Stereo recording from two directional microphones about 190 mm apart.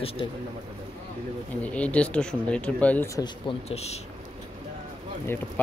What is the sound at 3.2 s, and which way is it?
Speech, 30° left (ahead or behind).